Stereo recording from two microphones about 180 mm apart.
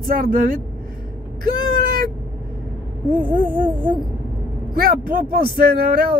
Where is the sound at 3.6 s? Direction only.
30° right (ahead or behind).